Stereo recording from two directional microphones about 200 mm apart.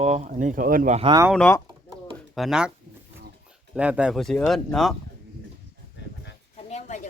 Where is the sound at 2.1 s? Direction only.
Centre (ahead or behind).